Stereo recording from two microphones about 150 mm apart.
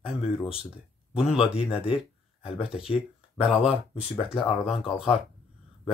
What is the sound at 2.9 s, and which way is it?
Speech, 40° left (ahead or behind).